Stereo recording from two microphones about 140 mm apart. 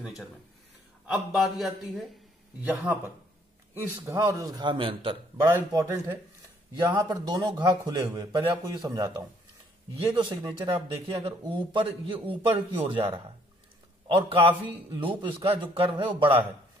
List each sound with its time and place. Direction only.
0.0 s a man's voice: centre (ahead or behind)
3.9 s a man's voice: 20° right (ahead or behind); by 5.1 s 40° right (ahead or behind)
5.7 s a man's voice: 30° right (ahead or behind)
14.0 s a man's voice: 40° right (ahead or behind)